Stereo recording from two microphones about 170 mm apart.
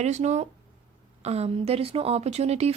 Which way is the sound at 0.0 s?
40° right (ahead or behind).